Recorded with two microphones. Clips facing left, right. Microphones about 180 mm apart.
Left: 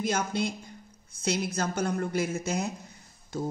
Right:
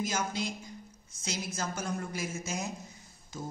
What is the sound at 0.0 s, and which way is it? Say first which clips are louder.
A woman's voice: left 5 dB; 60° left (ahead or behind).